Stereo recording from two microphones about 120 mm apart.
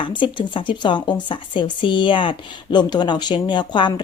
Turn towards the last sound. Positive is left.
turn(degrees=40)  # may be behind; listen again after turning